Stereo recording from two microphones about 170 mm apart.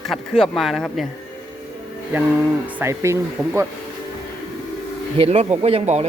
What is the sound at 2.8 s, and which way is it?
Speech, 15° right (ahead or behind).